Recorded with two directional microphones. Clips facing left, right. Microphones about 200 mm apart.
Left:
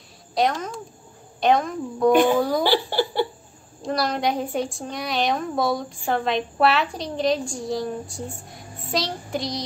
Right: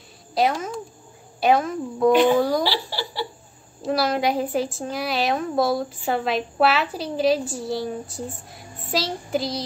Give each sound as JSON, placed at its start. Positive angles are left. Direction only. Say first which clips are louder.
{"t": 0.3, "sound": "a woman's voice", "louder": "right 1 dB", "side_deg": -5}
{"t": 2.6, "sound": "speech", "louder": "left 5 dB", "side_deg": 50}
{"t": 3.8, "sound": "a woman's voice", "louder": "right 2 dB", "side_deg": -5}